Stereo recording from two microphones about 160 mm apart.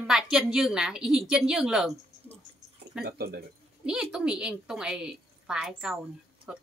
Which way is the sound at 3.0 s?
75° right (ahead or behind).